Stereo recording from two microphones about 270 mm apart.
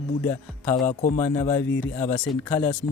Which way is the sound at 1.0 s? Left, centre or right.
Left.